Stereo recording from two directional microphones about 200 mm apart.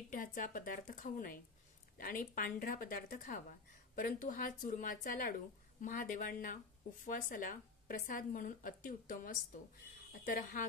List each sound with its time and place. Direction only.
0.1 s a woman's voice: 40° left (ahead or behind)